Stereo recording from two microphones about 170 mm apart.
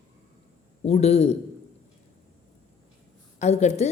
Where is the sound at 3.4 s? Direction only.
40° left (ahead or behind).